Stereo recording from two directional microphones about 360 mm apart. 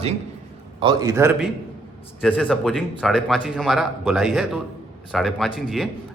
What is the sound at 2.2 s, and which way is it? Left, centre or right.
A man's voice, centre.